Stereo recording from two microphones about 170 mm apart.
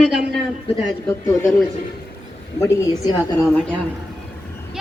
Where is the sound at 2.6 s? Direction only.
15° left (ahead or behind).